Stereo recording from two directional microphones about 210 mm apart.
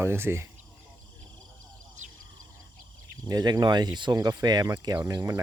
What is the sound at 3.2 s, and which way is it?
Speech, 20° right (ahead or behind).